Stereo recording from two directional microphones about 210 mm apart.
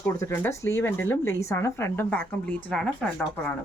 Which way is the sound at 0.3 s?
10° left (ahead or behind).